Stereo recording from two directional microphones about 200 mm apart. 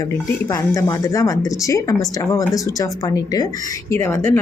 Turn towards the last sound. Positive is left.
turn(degrees=10)  # may be behind; listen again after turning